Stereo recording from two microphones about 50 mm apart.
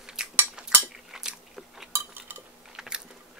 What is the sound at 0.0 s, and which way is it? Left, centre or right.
Cutlery, centre.